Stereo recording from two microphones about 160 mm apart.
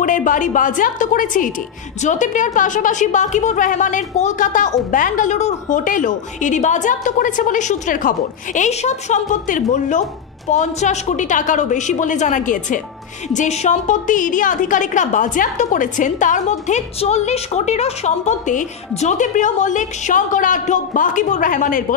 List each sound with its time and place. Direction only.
0.0 s a woman's voice: 55° left (ahead or behind)